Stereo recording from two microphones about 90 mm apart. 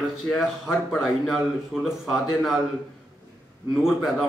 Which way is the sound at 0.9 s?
Centre (ahead or behind).